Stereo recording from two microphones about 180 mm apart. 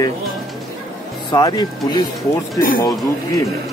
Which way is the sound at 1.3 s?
25° left (ahead or behind).